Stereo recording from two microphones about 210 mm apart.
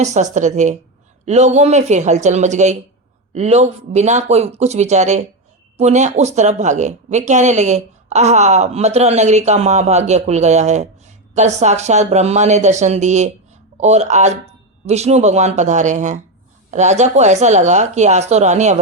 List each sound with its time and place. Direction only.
0.0 s speech: 35° right (ahead or behind)